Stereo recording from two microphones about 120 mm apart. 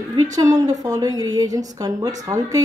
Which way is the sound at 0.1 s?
30° right (ahead or behind).